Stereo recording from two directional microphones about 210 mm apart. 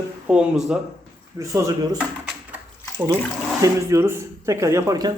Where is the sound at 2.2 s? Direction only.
10° right (ahead or behind).